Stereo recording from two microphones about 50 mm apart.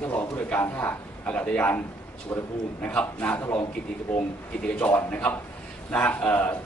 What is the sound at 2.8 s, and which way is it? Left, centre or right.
Speech, left.